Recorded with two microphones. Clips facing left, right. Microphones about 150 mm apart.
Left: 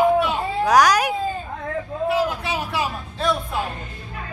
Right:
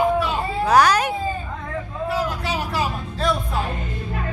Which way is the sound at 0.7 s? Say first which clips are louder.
Even; 10° left (ahead or behind).